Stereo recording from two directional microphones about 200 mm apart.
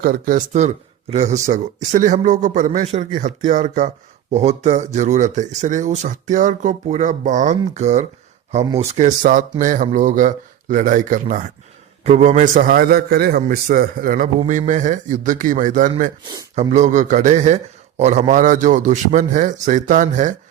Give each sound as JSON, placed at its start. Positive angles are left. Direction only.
{"t": 0.0, "sound": "speech", "side_deg": -45}
{"t": 8.6, "sound": "speech", "side_deg": -15}
{"t": 9.0, "sound": "a man's voice", "side_deg": -40}
{"t": 14.3, "sound": "speech", "side_deg": -35}
{"t": 16.2, "sound": "speech", "side_deg": -20}
{"t": 16.6, "sound": "speech", "side_deg": -35}